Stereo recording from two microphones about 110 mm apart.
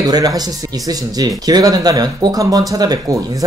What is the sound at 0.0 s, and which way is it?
Speech, 35° right (ahead or behind).